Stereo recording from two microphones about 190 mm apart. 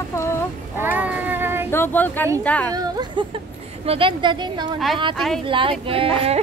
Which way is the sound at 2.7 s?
20° right (ahead or behind).